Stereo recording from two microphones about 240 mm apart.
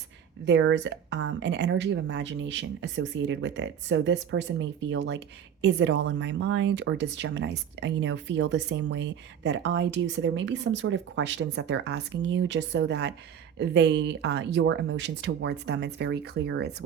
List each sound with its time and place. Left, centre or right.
0.4 s speech: right